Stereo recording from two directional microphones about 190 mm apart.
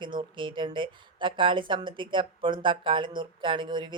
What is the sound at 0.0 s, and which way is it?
Speech, 25° right (ahead or behind).